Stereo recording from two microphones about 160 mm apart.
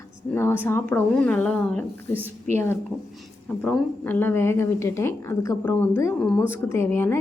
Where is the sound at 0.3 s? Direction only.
15° left (ahead or behind).